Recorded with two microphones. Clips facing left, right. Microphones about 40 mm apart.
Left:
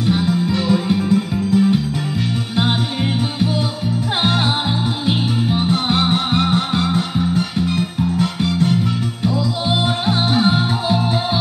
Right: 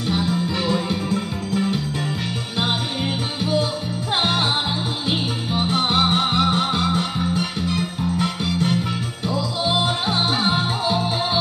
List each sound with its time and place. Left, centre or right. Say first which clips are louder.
0.0 s music: left 4 dB; centre
0.5 s music: left 5 dB; centre
4.2 s music: left 2 dB; centre
5.6 s music: right 2 dB; centre